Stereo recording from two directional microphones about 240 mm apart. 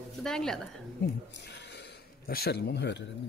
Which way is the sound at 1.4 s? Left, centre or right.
Left.